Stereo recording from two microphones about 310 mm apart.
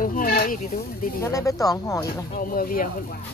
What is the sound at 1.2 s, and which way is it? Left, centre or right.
Speech, centre.